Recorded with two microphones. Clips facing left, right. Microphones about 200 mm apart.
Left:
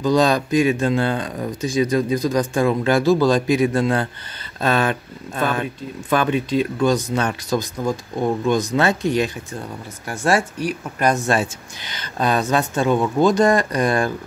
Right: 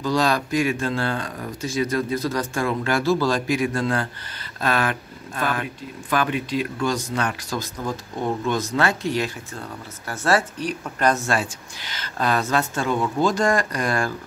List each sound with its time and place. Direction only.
0.0 s speech: 20° left (ahead or behind)